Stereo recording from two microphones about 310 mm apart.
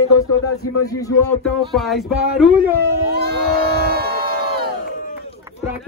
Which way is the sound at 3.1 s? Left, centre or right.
Right.